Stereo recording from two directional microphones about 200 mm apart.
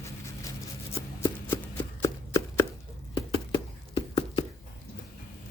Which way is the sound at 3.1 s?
25° left (ahead or behind).